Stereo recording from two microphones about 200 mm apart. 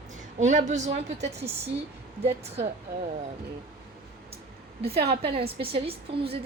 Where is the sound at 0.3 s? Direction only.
35° right (ahead or behind).